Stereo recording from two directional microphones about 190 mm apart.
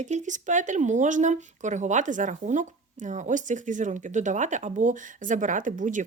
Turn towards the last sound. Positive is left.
turn(degrees=-45)  # may be behind; listen again after turning